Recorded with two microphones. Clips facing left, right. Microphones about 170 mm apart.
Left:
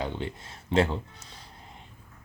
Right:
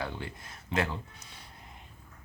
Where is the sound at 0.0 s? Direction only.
20° left (ahead or behind).